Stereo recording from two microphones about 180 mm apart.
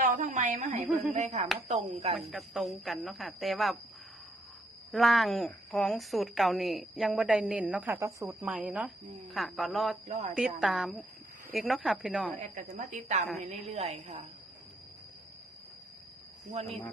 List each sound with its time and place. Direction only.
0.0 s a sound: 45° right (ahead or behind)
1.1 s a woman's voice: 40° right (ahead or behind)
2.1 s a woman's voice: centre (ahead or behind)
4.9 s a woman's voice: centre (ahead or behind)
10.1 s a woman's voice: 40° right (ahead or behind)
10.3 s a woman's voice: 5° right (ahead or behind)
12.5 s a woman's voice: 40° right (ahead or behind)
16.6 s a woman's voice: 35° right (ahead or behind)